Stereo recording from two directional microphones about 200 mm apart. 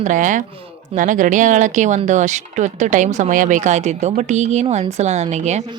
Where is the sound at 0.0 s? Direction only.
40° right (ahead or behind).